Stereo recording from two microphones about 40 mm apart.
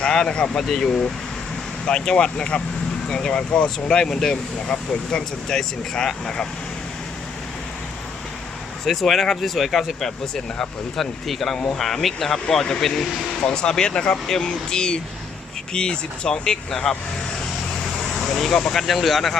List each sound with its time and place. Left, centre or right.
0.0 s speech: centre
1.9 s speech: centre
8.8 s speech: centre
18.0 s speech: centre